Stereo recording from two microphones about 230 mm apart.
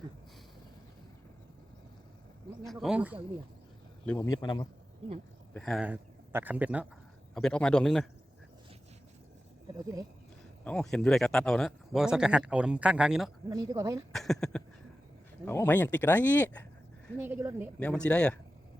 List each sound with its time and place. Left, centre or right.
2.8 s speech: centre
4.0 s speech: centre
5.5 s speech: centre
9.7 s speech: centre
10.6 s speech: centre
13.5 s speech: centre
14.1 s speech: centre
17.2 s speech: centre
17.7 s speech: centre